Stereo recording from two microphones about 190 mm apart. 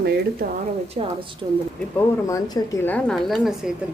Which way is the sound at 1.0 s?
35° right (ahead or behind).